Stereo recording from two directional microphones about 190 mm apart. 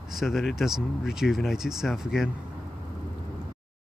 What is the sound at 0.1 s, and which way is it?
Speech, centre (ahead or behind).